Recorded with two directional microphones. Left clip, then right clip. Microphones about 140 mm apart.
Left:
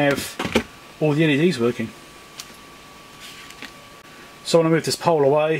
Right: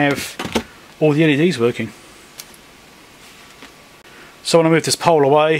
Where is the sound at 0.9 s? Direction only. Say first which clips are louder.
Right 5 dB; 30° right (ahead or behind).